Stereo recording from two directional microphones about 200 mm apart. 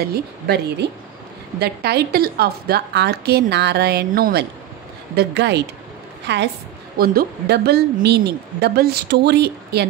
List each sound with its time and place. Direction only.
0.0 s a woman's voice: 50° right (ahead or behind)